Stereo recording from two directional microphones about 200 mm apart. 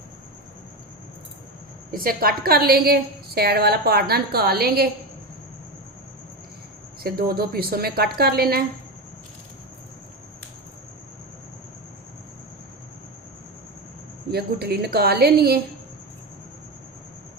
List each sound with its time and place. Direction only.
1.9 s a woman's voice: 45° right (ahead or behind)
7.0 s a woman's voice: 50° right (ahead or behind)
14.3 s a woman's voice: 50° right (ahead or behind)